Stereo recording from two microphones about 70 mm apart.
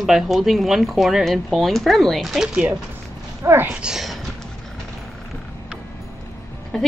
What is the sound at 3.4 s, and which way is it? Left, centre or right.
Speech, right.